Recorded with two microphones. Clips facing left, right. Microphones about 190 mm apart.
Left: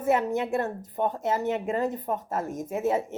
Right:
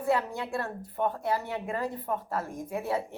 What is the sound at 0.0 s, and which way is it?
A woman's voice, 20° left (ahead or behind).